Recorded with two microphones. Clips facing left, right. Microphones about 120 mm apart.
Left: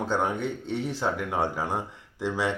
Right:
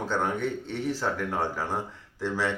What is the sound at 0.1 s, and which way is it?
Speech, 15° left (ahead or behind).